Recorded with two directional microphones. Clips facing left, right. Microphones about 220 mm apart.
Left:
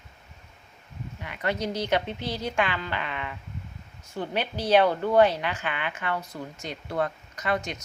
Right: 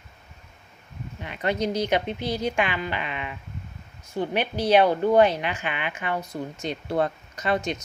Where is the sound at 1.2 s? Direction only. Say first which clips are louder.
Right 3 dB; 25° right (ahead or behind).